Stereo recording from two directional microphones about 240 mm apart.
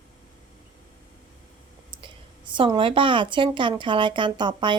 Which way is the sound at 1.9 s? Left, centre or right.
Centre.